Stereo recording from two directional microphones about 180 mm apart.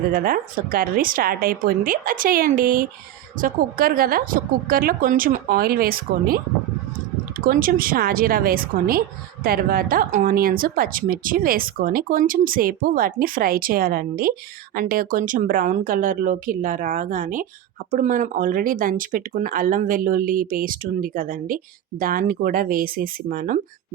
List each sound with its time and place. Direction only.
0.1 s a woman's voice: 50° right (ahead or behind)
7.4 s a woman's voice: 55° right (ahead or behind)